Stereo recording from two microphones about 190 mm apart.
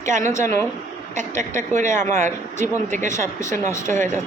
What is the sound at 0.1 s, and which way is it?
Speech, 40° right (ahead or behind).